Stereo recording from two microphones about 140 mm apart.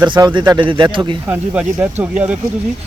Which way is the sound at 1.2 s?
10° right (ahead or behind).